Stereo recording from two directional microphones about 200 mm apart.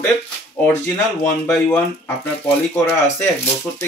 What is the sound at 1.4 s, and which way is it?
Speech, 5° left (ahead or behind).